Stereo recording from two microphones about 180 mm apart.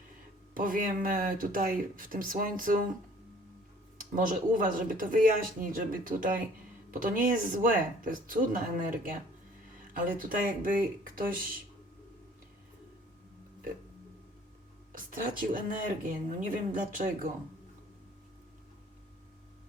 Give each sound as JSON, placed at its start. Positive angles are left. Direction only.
{"t": 0.5, "sound": "speech", "side_deg": -50}
{"t": 4.1, "sound": "speech", "side_deg": -50}
{"t": 10.2, "sound": "speech", "side_deg": -50}
{"t": 14.9, "sound": "speech", "side_deg": -50}